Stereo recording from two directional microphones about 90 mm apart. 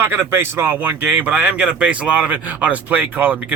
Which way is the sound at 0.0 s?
25° right (ahead or behind).